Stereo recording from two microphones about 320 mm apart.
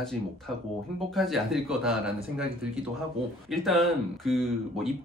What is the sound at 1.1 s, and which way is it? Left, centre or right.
Speech, centre.